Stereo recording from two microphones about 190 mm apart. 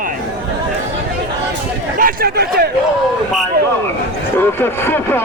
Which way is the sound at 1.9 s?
50° right (ahead or behind).